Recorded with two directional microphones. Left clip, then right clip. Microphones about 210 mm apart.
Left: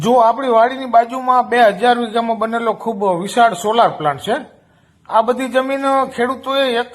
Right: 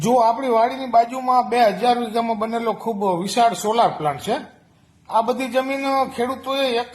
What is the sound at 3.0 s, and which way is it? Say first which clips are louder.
Speech: left 5 dB; 10° left (ahead or behind).